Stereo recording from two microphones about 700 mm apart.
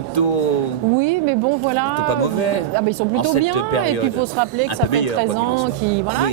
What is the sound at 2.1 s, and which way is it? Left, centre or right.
Speech, left.